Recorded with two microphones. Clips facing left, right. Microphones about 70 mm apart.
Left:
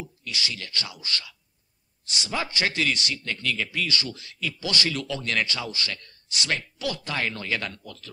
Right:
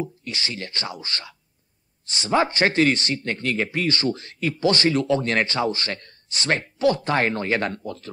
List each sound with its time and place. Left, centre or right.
0.0 s a man's voice: right